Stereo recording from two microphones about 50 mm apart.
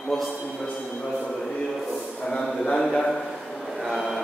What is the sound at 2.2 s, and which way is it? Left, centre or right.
Speech, centre.